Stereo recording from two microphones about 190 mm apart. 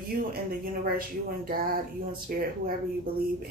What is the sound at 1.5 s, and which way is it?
Speech, 50° right (ahead or behind).